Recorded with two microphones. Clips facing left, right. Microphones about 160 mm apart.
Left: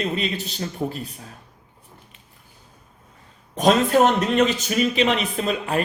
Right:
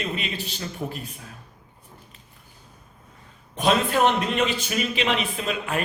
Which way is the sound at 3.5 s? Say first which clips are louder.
Left 5 dB; 40° left (ahead or behind).